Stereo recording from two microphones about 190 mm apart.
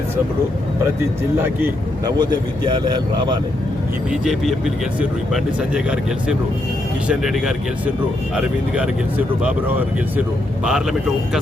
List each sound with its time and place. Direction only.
1.6 s speech: 20° right (ahead or behind)
4.1 s speech: centre (ahead or behind)